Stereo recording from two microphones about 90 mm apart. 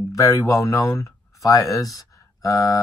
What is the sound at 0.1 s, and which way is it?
Speech, 40° left (ahead or behind).